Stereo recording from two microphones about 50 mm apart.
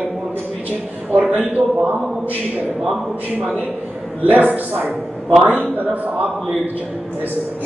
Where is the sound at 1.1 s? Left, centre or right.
Right.